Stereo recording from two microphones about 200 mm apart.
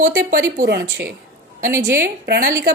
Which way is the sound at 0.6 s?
55° right (ahead or behind).